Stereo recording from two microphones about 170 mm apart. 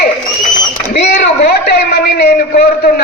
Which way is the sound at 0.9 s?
70° left (ahead or behind).